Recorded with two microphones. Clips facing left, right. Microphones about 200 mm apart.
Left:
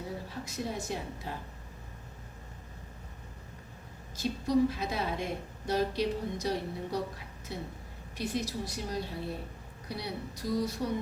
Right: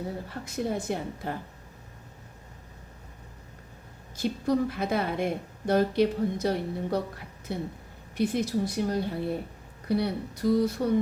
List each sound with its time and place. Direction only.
0.3 s a woman's voice: 55° right (ahead or behind)
4.2 s a woman's voice: 55° right (ahead or behind)